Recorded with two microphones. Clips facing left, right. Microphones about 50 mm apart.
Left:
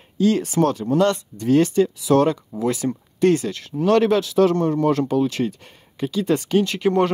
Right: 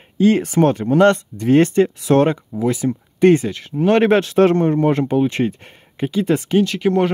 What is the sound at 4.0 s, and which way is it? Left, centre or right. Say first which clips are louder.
Speech: right 3 dB; right.